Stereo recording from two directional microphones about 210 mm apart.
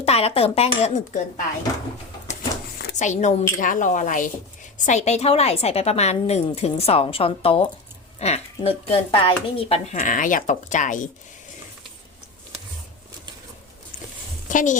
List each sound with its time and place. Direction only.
0.0 s speech: 30° left (ahead or behind)
2.8 s a woman's voice: 35° left (ahead or behind)
14.5 s speech: 35° left (ahead or behind)